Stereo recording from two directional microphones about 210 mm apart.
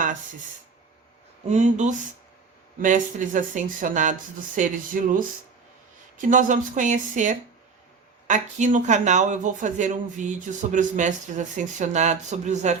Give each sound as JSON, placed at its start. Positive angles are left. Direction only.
{"t": 1.5, "sound": "speech", "side_deg": -35}
{"t": 6.1, "sound": "speech", "side_deg": -40}